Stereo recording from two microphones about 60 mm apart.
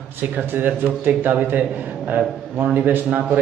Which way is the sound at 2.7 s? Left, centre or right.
Right.